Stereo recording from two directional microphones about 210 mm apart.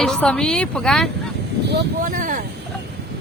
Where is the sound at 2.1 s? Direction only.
40° right (ahead or behind).